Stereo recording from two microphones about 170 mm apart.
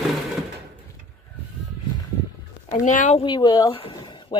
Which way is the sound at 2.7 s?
50° left (ahead or behind).